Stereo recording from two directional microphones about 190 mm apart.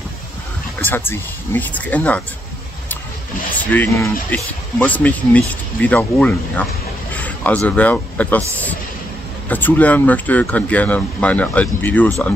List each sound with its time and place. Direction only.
0.7 s speech: 10° left (ahead or behind)
3.7 s speech: 15° left (ahead or behind)
9.5 s speech: 10° left (ahead or behind)